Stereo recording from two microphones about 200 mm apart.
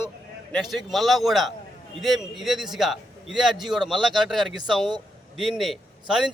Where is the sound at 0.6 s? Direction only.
Centre (ahead or behind).